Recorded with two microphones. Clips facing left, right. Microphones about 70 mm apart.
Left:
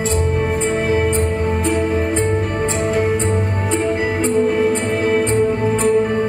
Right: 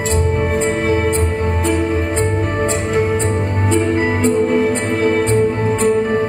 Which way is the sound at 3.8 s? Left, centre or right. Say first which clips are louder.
Right 2 dB; right.